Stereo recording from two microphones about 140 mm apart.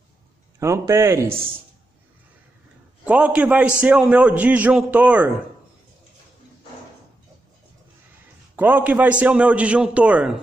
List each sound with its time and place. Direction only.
0.6 s a man's voice: 20° right (ahead or behind)
3.1 s a man's voice: 10° right (ahead or behind)
8.5 s a man's voice: 15° right (ahead or behind)